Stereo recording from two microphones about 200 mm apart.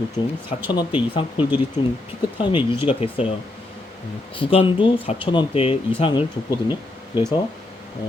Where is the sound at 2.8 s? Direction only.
30° left (ahead or behind).